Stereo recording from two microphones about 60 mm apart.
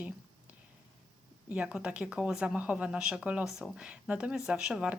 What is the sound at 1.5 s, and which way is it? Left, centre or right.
Speech, centre.